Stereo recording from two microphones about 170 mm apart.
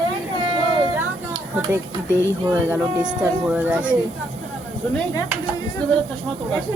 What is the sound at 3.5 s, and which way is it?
Speech, 10° right (ahead or behind).